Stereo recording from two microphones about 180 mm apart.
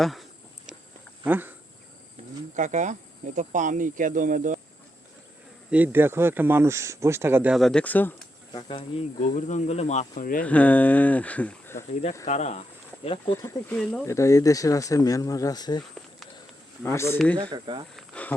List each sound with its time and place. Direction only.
0.0 s speech: centre (ahead or behind)
1.2 s speech: 10° right (ahead or behind)
2.6 s speech: 45° right (ahead or behind)
5.7 s speech: 10° right (ahead or behind); by 8.1 s 10° left (ahead or behind)
8.5 s speech: 30° left (ahead or behind)
9.2 s speech: 45° left (ahead or behind)
10.4 s speech: 10° left (ahead or behind)
12.2 s speech: 40° left (ahead or behind)
13.1 s speech: 20° left (ahead or behind)
13.7 s speech: 5° left (ahead or behind)
14.1 s speech: 15° left (ahead or behind)
16.8 s speech: 15° left (ahead or behind)
17.5 s speech: 25° right (ahead or behind)
17.9 s a sound: 5° left (ahead or behind)